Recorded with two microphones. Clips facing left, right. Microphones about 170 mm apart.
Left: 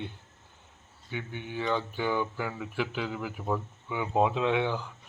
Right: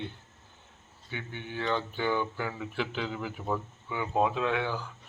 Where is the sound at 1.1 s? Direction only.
10° left (ahead or behind).